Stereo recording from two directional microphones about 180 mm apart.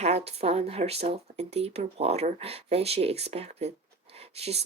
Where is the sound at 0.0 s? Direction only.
35° right (ahead or behind).